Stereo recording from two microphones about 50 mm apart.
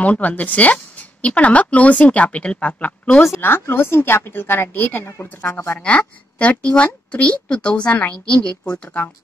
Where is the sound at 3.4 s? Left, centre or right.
Left.